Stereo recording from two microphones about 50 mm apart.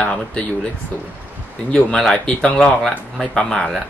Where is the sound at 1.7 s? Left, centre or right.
Left.